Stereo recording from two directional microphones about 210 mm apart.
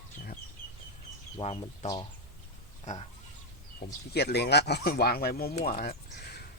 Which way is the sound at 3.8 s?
50° left (ahead or behind).